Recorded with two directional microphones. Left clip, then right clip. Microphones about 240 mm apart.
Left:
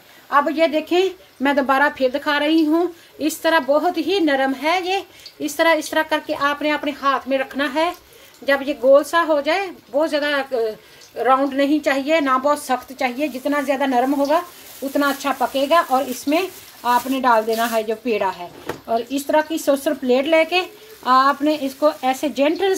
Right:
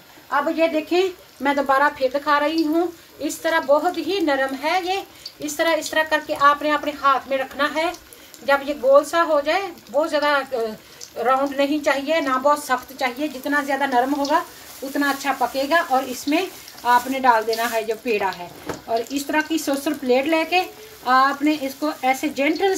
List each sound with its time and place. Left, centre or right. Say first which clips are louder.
0.3 s a woman's voice: left 3 dB; left
19.3 s a woman's voice: left 5 dB; centre